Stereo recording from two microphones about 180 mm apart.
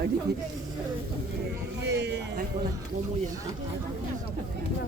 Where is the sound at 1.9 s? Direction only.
70° right (ahead or behind).